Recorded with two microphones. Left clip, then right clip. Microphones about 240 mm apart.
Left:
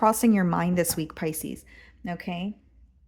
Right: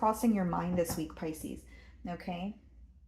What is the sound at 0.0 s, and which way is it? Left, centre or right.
Speech, left.